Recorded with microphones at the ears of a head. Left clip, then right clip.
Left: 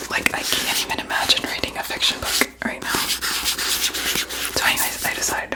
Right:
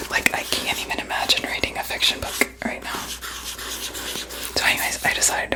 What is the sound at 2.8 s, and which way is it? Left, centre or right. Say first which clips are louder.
Whispering: left 7 dB; left.